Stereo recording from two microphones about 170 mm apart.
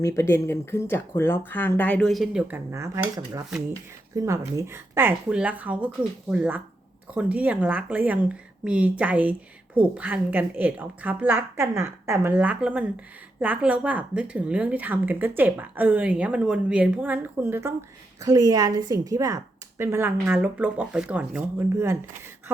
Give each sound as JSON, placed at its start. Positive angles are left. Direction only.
{"t": 0.0, "sound": "speech", "side_deg": 15}
{"t": 2.7, "sound": "speech", "side_deg": -15}
{"t": 4.1, "sound": "speech", "side_deg": -20}